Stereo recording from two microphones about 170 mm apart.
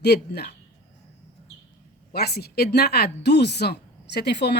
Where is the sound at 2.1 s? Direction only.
70° left (ahead or behind).